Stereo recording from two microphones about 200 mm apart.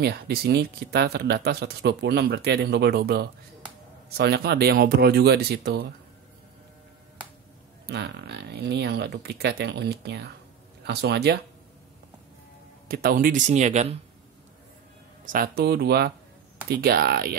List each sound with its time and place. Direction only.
0.0 s speech: 55° right (ahead or behind)
7.8 s speech: 55° right (ahead or behind)
12.8 s speech: 50° right (ahead or behind)
15.2 s speech: 45° right (ahead or behind)